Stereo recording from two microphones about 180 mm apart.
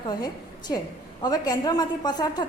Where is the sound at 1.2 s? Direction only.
20° left (ahead or behind).